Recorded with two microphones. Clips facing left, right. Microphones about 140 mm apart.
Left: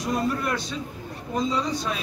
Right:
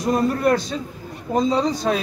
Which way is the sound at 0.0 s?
45° right (ahead or behind).